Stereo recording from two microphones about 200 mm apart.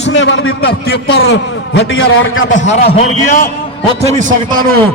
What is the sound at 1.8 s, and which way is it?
Speech, 80° left.